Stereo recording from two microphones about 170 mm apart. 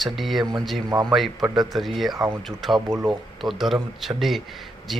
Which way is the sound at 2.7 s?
20° right (ahead or behind).